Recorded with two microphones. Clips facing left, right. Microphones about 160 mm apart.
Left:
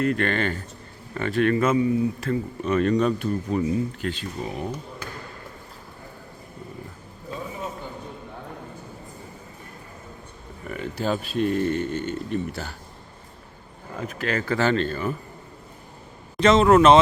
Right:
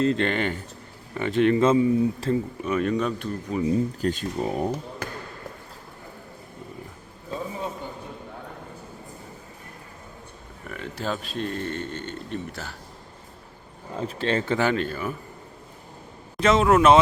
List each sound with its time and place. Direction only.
0.0 s speech: 20° right (ahead or behind)
2.6 s speech: 10° right (ahead or behind)
3.7 s speech: 40° right (ahead or behind)
10.7 s speech: centre (ahead or behind)
13.9 s speech: 30° right (ahead or behind); by 15.1 s 10° right (ahead or behind)
16.4 s speech: 5° right (ahead or behind)